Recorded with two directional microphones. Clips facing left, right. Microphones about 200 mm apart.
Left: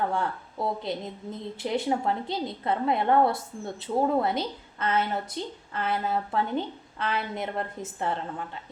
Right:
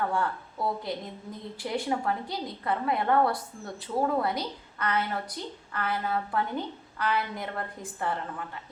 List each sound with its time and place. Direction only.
0.1 s a woman's voice: 25° left (ahead or behind)